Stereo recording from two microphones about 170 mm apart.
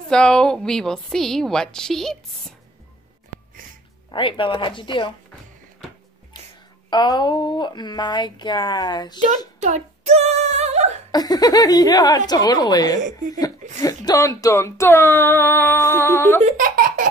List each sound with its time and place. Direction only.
0.1 s a woman's voice: 5° left (ahead or behind)
4.1 s speech: 30° left (ahead or behind)
6.9 s speech: 25° left (ahead or behind)
9.6 s a sound: 40° right (ahead or behind)
11.1 s speech: 20° left (ahead or behind)
16.5 s speech: 55° right (ahead or behind)